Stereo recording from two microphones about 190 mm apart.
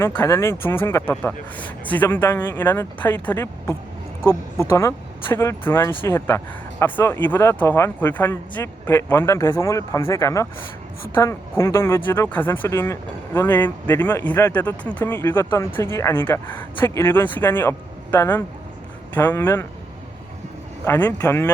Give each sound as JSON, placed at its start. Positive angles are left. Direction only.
{"t": 0.2, "sound": "speech", "side_deg": 15}
{"t": 20.8, "sound": "speech", "side_deg": 10}